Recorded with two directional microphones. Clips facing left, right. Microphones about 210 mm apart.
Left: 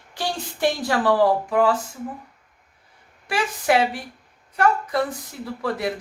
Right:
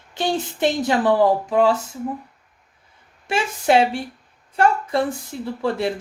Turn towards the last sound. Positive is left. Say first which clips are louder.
# right 3 dB
turn(degrees=-25)  # may be behind; listen again after turning